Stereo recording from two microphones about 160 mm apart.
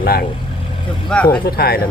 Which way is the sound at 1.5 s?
75° left (ahead or behind).